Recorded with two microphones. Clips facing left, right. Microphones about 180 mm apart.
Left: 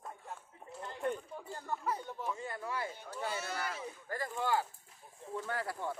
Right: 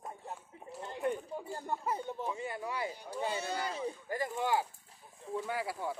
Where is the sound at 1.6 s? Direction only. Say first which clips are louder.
Even; 25° right (ahead or behind).